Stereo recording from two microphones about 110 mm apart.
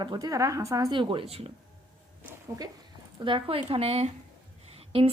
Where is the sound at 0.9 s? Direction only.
45° right (ahead or behind).